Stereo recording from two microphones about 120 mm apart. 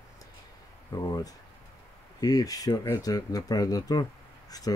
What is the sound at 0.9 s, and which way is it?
Speech, 30° left (ahead or behind).